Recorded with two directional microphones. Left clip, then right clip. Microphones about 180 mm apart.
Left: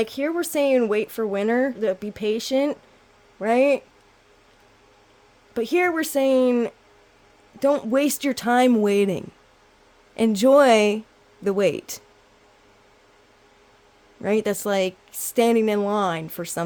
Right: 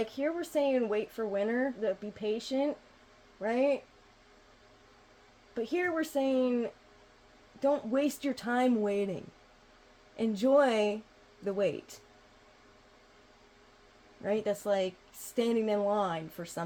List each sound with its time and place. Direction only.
0.0 s speech: 65° left (ahead or behind)
5.5 s speech: 65° left (ahead or behind)
14.2 s speech: 65° left (ahead or behind)